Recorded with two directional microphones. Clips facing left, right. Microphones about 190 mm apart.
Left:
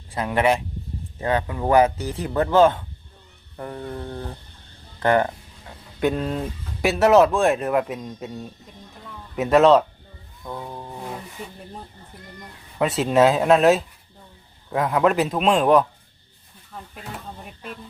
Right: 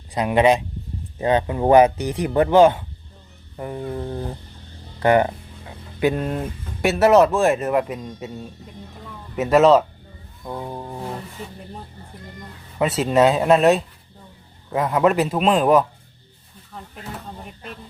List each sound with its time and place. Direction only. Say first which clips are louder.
0.1 s speech: right 4 dB; 15° right (ahead or behind); by 8.3 s centre (ahead or behind)
9.3 s speech: right 1 dB; centre (ahead or behind)
10.4 s music: right 3 dB; 15° right (ahead or behind)
12.8 s speech: right 1 dB; centre (ahead or behind)